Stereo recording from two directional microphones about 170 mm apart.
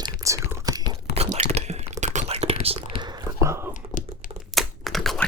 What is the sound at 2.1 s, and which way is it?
Whispering, 40° right (ahead or behind).